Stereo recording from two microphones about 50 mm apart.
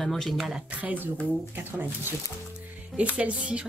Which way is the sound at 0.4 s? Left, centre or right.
Centre.